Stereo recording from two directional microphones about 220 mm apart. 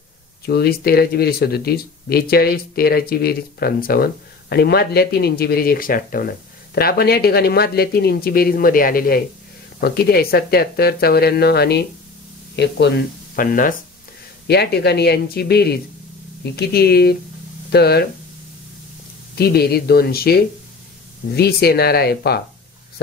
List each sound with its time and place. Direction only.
0.5 s speech: 45° left (ahead or behind)
19.3 s speech: 45° left (ahead or behind)